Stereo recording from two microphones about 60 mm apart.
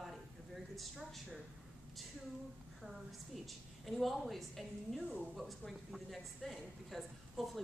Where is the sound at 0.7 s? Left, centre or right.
Centre.